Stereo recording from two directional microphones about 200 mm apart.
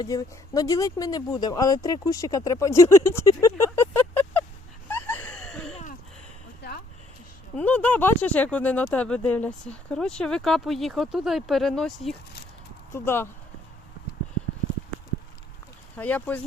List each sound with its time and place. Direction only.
0.0 s speech: 20° left (ahead or behind)
4.9 s a sound: 10° left (ahead or behind)
7.5 s speech: 10° left (ahead or behind)
16.0 s speech: 10° left (ahead or behind)